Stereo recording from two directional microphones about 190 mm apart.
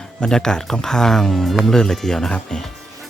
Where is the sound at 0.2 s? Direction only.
5° left (ahead or behind).